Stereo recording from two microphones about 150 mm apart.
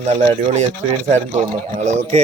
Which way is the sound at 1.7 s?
55° right (ahead or behind).